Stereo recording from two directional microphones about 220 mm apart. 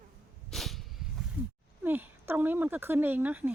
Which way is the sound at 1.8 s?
10° right (ahead or behind).